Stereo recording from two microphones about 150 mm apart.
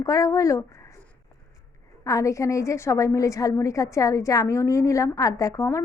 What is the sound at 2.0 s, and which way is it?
A woman's voice, 20° left (ahead or behind).